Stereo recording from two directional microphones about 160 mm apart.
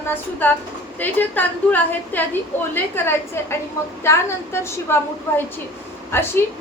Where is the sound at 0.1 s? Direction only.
10° left (ahead or behind).